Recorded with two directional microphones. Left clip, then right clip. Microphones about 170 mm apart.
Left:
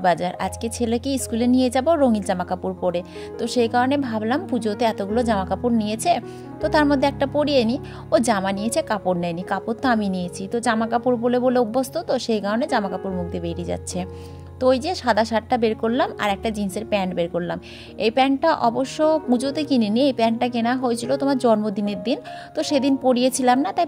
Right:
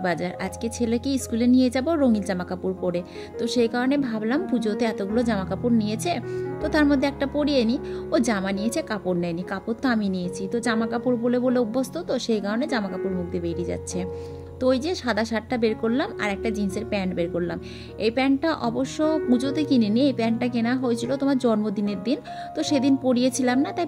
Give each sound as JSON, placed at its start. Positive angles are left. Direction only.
{"t": 0.0, "sound": "a woman's voice", "side_deg": 30}